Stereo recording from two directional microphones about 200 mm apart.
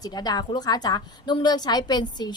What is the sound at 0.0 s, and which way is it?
A woman's voice, 20° left (ahead or behind).